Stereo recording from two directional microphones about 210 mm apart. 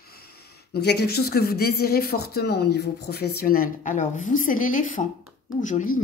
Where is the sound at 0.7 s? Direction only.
50° left (ahead or behind).